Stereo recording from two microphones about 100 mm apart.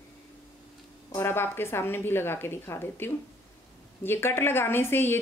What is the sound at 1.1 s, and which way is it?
A woman's voice, 25° left (ahead or behind).